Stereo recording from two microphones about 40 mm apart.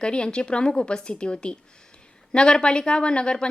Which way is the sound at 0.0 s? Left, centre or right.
Left.